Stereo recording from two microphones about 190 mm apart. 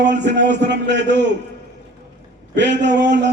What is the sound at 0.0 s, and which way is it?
A man's voice, 65° right (ahead or behind).